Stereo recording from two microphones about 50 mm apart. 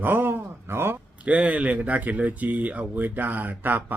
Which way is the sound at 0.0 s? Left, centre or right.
Right.